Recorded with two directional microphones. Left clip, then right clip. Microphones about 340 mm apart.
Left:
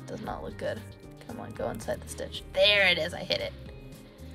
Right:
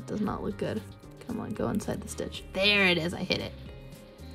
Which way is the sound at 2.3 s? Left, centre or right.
Centre.